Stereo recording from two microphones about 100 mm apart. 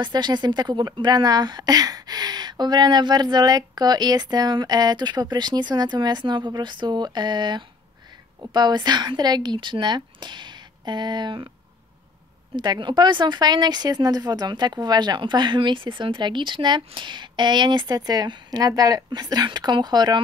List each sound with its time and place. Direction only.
0.0 s speech: 50° right (ahead or behind)
12.5 s speech: 50° right (ahead or behind)